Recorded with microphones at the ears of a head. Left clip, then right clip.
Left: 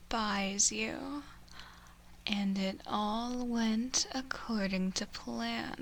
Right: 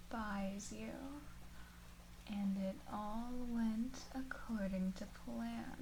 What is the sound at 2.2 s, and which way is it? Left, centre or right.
Speech, left.